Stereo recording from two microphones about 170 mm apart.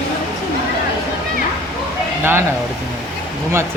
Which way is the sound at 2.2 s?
15° right (ahead or behind).